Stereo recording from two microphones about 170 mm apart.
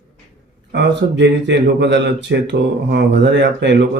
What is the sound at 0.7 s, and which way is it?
Speech, 90° right.